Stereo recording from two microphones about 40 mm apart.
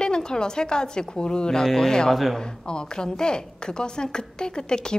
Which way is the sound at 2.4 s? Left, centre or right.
Left.